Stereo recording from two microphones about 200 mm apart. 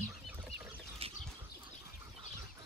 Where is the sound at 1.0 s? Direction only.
30° right (ahead or behind).